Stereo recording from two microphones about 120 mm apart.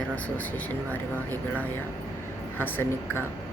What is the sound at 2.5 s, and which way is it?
Speech, 15° left (ahead or behind).